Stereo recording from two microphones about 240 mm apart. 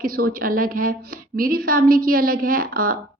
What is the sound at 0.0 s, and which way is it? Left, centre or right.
A woman's voice, right.